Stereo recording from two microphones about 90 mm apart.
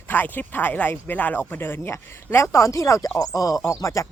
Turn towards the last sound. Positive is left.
turn(degrees=35)  # may be behind; listen again after turning